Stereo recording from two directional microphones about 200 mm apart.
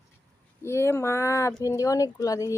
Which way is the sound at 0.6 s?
15° left (ahead or behind).